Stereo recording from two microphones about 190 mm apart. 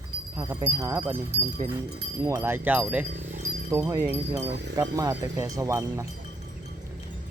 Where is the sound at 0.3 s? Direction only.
10° right (ahead or behind).